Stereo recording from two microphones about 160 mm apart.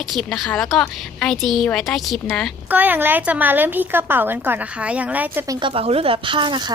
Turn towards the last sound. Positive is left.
turn(degrees=-30)  # may be behind; listen again after turning